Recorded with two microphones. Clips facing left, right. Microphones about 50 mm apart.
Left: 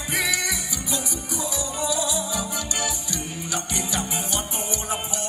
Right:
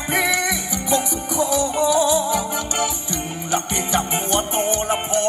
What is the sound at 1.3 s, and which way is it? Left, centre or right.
Music, right.